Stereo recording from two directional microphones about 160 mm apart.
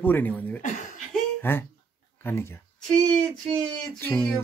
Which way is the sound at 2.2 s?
15° left (ahead or behind).